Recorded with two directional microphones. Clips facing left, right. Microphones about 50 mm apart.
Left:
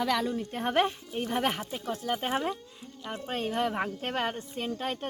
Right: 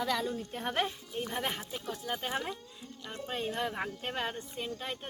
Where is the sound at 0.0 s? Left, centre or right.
Left.